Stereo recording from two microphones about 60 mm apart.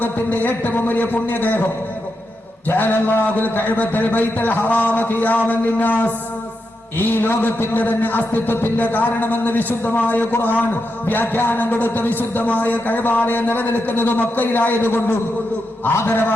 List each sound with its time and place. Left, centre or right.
0.0 s music: left
2.6 s music: left